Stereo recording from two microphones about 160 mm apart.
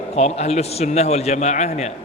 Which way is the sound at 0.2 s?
45° left (ahead or behind).